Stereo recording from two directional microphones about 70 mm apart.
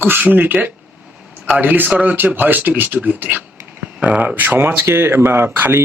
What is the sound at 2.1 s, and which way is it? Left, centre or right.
Speech, right.